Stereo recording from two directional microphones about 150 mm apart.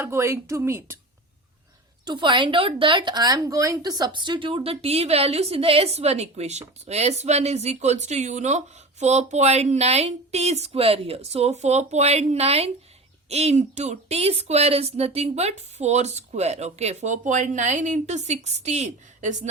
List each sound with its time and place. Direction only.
0.0 s a woman's voice: 15° right (ahead or behind)
2.0 s speech: 30° right (ahead or behind); by 19.5 s 55° right (ahead or behind)